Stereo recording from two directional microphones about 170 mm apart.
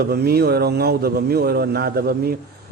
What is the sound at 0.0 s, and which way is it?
A man's voice, 70° right (ahead or behind).